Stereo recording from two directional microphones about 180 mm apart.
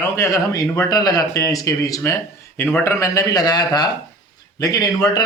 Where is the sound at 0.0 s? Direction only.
15° left (ahead or behind).